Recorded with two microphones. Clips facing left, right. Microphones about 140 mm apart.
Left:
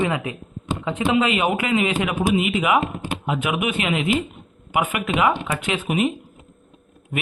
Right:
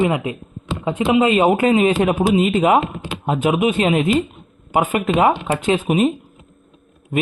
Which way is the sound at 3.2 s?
25° right (ahead or behind).